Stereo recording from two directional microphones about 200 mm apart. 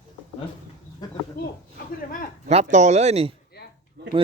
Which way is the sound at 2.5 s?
35° right (ahead or behind).